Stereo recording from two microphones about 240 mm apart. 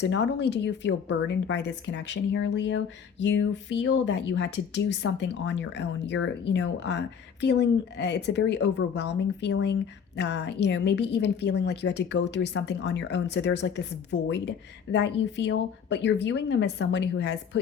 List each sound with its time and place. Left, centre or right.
0.0 s a woman's voice: left